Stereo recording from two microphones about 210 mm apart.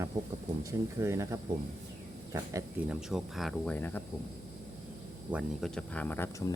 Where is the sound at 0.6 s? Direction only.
15° right (ahead or behind).